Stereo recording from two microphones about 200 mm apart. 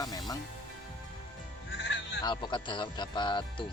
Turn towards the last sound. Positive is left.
turn(degrees=25)  # may be behind; listen again after turning